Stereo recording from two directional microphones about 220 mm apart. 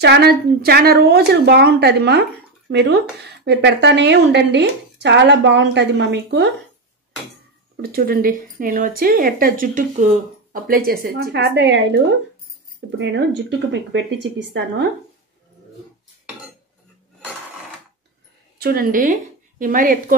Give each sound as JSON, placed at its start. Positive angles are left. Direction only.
{"t": 0.0, "sound": "a woman's voice", "side_deg": -50}
{"t": 7.7, "sound": "a woman's voice", "side_deg": -45}
{"t": 18.6, "sound": "speech", "side_deg": -40}